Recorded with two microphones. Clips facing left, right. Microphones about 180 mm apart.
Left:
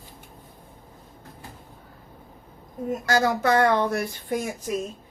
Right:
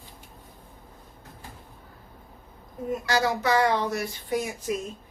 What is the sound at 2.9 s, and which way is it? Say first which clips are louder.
Speech: left 2 dB; 45° left (ahead or behind).